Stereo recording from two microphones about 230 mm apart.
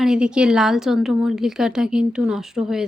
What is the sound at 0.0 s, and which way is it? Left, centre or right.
Speech, centre.